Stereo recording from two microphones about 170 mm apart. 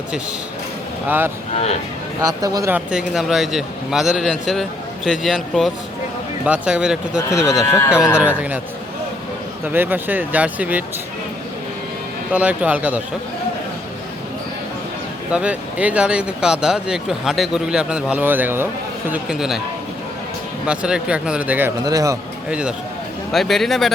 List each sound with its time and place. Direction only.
1.0 s speech: 10° right (ahead or behind)
2.2 s speech: 20° right (ahead or behind)
2.7 s speech: 5° right (ahead or behind)
7.4 s speech: 20° left (ahead or behind)
8.1 s speech: 10° right (ahead or behind)
9.6 s speech: 10° right (ahead or behind)
12.3 s speech: 10° right (ahead or behind)
15.3 s speech: 5° right (ahead or behind)
20.7 s speech: 5° right (ahead or behind)
21.8 s speech: 20° right (ahead or behind)
22.4 s speech: 5° right (ahead or behind)